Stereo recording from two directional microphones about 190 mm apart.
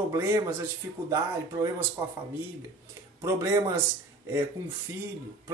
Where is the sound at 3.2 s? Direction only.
15° right (ahead or behind).